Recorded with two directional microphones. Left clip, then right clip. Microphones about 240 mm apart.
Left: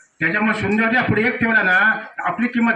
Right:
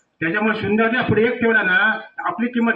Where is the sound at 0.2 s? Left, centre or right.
Left.